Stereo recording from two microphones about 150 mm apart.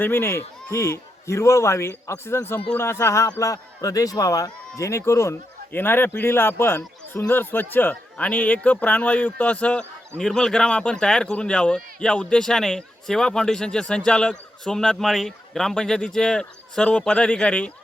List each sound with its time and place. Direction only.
0.0 s a man's voice: 15° left (ahead or behind)